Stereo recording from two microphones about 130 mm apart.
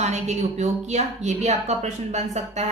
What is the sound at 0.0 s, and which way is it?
A woman's voice, 60° right (ahead or behind).